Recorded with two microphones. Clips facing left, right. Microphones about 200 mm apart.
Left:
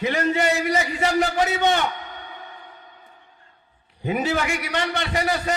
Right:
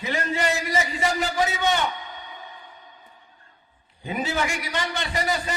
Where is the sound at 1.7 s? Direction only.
60° left (ahead or behind).